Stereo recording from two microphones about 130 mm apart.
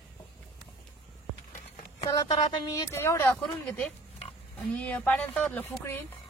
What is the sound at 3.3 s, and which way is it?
Speech, 10° left (ahead or behind).